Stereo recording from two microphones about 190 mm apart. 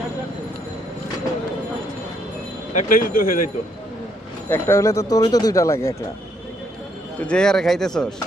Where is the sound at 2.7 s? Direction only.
45° left (ahead or behind).